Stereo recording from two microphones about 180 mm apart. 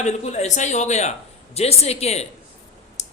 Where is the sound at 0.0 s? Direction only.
40° left (ahead or behind).